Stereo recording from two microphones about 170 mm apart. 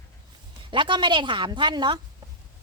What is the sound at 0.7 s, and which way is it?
A woman's voice, 30° right (ahead or behind).